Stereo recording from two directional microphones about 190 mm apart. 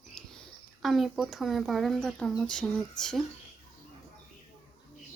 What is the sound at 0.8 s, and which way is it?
Speech, centre (ahead or behind).